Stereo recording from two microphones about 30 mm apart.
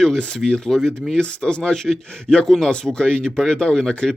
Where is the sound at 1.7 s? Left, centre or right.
Left.